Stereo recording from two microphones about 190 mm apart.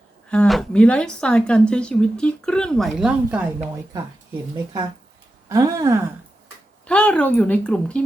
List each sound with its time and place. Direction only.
0.3 s speech: 5° left (ahead or behind)
5.5 s speech: 20° right (ahead or behind)
6.8 s speech: 5° left (ahead or behind)